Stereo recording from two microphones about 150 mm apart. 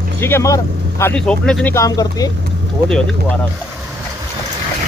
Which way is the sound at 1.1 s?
5° left (ahead or behind).